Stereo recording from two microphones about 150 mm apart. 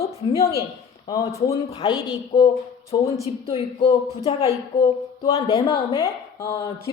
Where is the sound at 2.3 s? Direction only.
40° left (ahead or behind).